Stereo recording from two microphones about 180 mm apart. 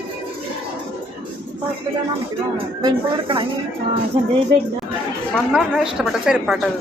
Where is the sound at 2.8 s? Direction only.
25° right (ahead or behind).